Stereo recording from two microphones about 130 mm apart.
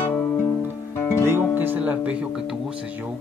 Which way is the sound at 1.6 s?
15° right (ahead or behind).